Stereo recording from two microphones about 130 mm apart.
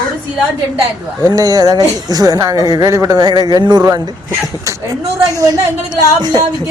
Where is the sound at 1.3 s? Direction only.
30° right (ahead or behind).